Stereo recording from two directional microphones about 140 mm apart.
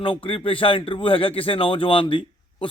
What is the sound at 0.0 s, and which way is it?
Speech, 40° left (ahead or behind).